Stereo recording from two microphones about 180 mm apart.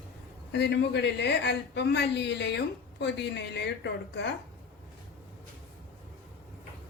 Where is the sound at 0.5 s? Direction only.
70° left (ahead or behind).